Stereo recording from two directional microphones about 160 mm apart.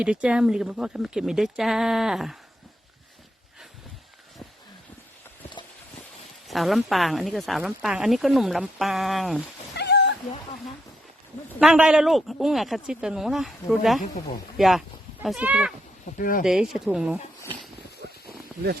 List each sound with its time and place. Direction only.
0.0 s speech: 5° right (ahead or behind)
6.5 s speech: centre (ahead or behind)
9.7 s cat: 90° left
11.6 s speech: 5° right (ahead or behind)
16.1 s speech: 60° left (ahead or behind)
16.4 s speech: 5° right (ahead or behind)
18.0 s a sound: 90° right